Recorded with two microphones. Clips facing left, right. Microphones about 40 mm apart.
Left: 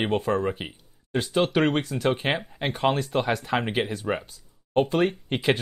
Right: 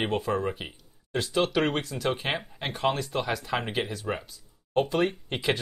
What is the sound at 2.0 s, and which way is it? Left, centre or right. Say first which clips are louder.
Speech: left 4 dB; centre.